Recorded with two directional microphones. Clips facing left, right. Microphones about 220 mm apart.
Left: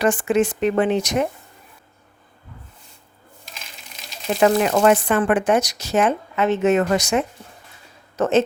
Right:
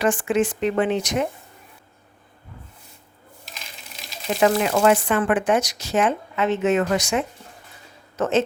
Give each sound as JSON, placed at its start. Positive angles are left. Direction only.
{"t": 0.0, "sound": "speech", "side_deg": 40}
{"t": 4.4, "sound": "speech", "side_deg": 45}